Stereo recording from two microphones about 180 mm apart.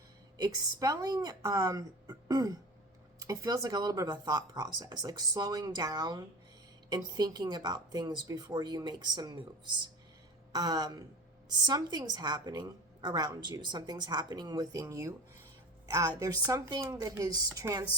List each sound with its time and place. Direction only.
0.3 s a woman's voice: 20° right (ahead or behind)
10.5 s a woman's voice: 20° right (ahead or behind)